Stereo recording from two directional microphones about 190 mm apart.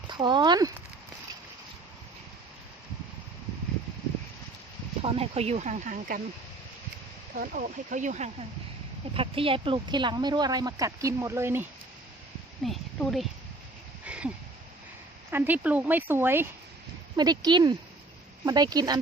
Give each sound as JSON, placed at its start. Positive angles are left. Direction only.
{"t": 0.1, "sound": "speech", "side_deg": -25}
{"t": 5.0, "sound": "speech", "side_deg": -30}
{"t": 7.3, "sound": "speech", "side_deg": -45}
{"t": 12.6, "sound": "speech", "side_deg": 0}
{"t": 14.0, "sound": "a sound", "side_deg": -5}
{"t": 15.3, "sound": "speech", "side_deg": -10}